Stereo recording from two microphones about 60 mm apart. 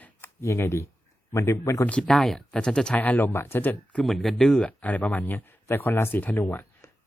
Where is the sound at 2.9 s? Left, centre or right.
Left.